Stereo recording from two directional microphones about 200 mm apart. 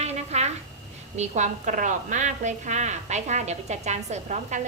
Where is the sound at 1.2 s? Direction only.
35° right (ahead or behind).